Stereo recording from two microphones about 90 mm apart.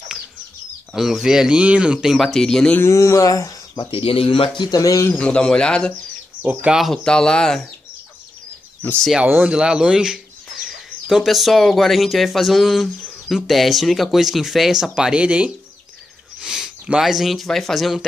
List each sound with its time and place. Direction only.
0.9 s speech: 5° right (ahead or behind)
2.1 s speech: 5° left (ahead or behind)
2.9 s a sound: 35° left (ahead or behind)
3.9 s speech: 90° left
4.6 s speech: 40° left (ahead or behind)
5.2 s speech: 10° left (ahead or behind)
6.6 s speech: 5° right (ahead or behind)
7.0 s speech: 10° left (ahead or behind)
9.2 s speech: 20° right (ahead or behind)
9.5 s speech: 10° right (ahead or behind)